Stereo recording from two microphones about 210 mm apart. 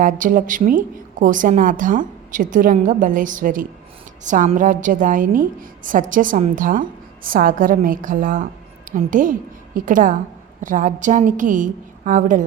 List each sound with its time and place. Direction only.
0.0 s a woman's voice: 40° right (ahead or behind)